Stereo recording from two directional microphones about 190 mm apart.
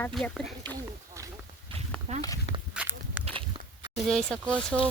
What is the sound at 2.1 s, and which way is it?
Walk, 35° right (ahead or behind).